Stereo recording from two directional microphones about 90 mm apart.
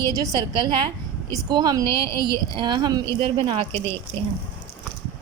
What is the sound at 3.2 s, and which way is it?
Speech, 85° right.